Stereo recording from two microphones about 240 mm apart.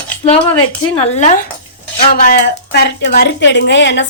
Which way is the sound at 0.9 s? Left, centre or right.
Left.